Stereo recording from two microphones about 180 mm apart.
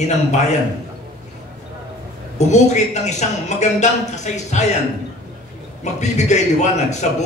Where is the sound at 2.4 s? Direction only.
40° left (ahead or behind).